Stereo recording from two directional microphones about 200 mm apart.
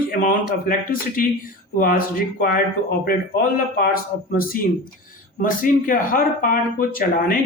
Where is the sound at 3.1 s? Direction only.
45° left (ahead or behind).